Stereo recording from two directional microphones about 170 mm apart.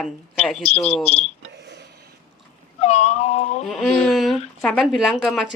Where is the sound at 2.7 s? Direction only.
40° left (ahead or behind).